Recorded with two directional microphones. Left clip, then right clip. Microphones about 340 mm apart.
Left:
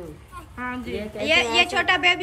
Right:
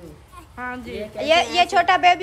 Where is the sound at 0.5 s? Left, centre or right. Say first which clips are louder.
Right 1 dB; right.